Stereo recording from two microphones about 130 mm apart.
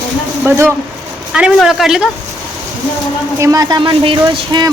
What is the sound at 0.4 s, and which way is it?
Speech, 20° right (ahead or behind).